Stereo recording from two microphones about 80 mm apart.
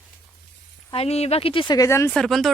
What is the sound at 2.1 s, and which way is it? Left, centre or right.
Speech, centre.